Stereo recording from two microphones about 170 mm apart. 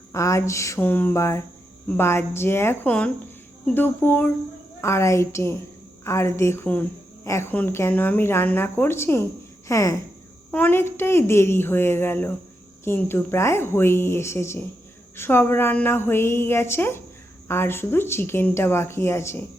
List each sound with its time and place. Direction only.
0.1 s speech: 15° left (ahead or behind)